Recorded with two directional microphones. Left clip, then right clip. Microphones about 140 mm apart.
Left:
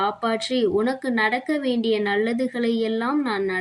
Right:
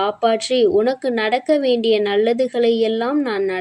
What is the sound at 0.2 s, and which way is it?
A woman's voice, 25° right (ahead or behind).